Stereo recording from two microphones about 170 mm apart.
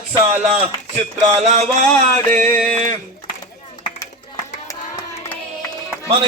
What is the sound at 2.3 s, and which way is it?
Music, 10° left (ahead or behind).